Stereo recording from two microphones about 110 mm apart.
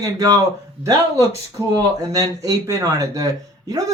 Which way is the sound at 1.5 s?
30° right (ahead or behind).